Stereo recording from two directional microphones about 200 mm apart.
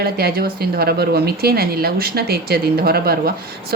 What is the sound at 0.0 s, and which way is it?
Speech, 50° right (ahead or behind).